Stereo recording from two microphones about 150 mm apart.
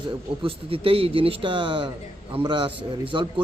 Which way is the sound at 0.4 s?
40° right (ahead or behind).